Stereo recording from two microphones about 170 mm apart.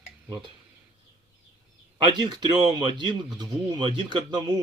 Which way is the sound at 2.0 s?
25° right (ahead or behind).